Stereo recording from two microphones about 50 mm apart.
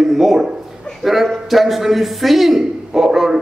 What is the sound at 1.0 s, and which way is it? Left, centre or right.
A man's voice, centre.